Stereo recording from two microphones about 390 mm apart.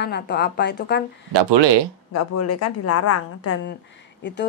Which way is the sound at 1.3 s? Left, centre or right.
Right.